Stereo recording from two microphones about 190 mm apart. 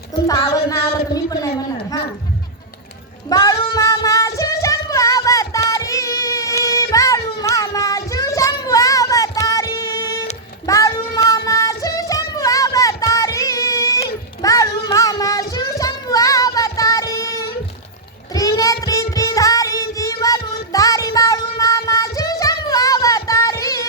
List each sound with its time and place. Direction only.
0.8 s a sound: 20° left (ahead or behind)
3.2 s child singing: 20° left (ahead or behind)
9.7 s music: 15° left (ahead or behind)
10.7 s child singing: 15° left (ahead or behind)
14.4 s a sound: 20° left (ahead or behind)
18.3 s child singing: 15° left (ahead or behind)